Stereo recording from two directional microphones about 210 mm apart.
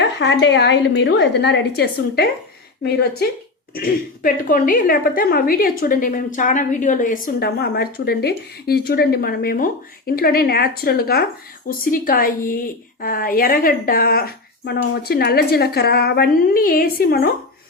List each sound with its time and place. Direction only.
0.0 s a woman's voice: 55° left (ahead or behind)